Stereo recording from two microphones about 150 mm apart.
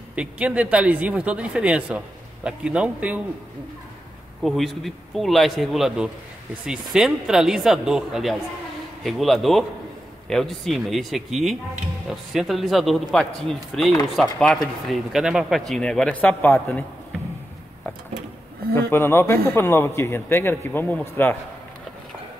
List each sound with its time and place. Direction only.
0.1 s speech: 10° right (ahead or behind)
4.4 s a man's voice: centre (ahead or behind)
18.8 s a man's voice: 15° left (ahead or behind)